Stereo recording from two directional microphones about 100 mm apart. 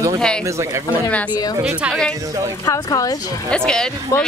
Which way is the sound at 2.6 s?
35° left (ahead or behind).